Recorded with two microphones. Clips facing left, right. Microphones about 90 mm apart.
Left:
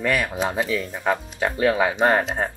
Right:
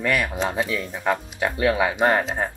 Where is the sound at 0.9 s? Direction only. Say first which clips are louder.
Even; centre (ahead or behind).